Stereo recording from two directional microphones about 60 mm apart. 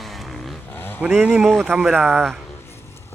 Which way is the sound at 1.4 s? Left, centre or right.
Centre.